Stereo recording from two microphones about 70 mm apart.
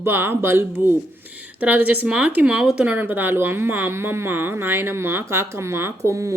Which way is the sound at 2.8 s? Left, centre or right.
Right.